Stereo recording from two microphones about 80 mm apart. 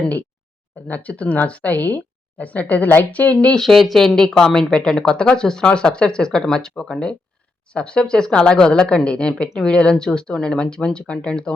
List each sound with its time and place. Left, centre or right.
0.9 s speech: centre
3.4 s speech: centre